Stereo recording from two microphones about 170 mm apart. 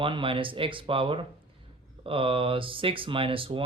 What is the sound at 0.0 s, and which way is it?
Speech, 30° right (ahead or behind).